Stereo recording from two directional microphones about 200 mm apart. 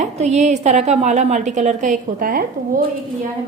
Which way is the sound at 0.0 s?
35° right (ahead or behind).